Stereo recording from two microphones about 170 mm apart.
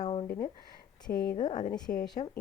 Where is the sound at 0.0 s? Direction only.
35° left (ahead or behind).